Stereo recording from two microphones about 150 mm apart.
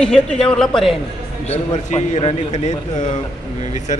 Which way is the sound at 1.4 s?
45° left (ahead or behind).